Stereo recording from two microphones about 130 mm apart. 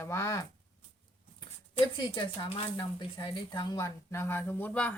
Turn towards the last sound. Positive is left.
turn(degrees=15)  # may be behind; listen again after turning